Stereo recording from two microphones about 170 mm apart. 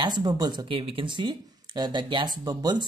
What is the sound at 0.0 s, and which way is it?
Speech, 25° right (ahead or behind).